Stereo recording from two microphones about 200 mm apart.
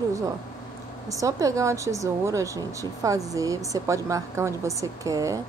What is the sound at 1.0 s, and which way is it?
A woman's voice, 15° right (ahead or behind).